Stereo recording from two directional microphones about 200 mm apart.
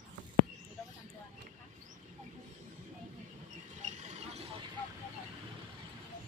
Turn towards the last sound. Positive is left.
turn(degrees=-35)  # may be behind; listen again after turning